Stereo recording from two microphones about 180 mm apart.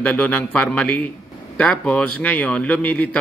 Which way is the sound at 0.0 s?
5° left (ahead or behind).